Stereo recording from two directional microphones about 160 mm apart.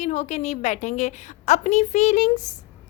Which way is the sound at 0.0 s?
45° left (ahead or behind).